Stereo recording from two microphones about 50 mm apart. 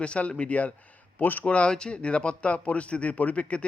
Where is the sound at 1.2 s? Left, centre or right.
Left.